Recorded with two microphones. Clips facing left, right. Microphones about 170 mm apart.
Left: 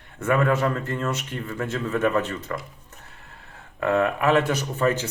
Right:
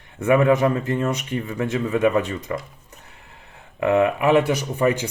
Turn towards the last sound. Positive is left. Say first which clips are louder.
# right 3 dB
turn(degrees=-15)  # may be behind; listen again after turning